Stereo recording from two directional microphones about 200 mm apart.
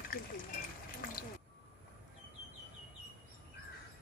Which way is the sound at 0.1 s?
50° left (ahead or behind).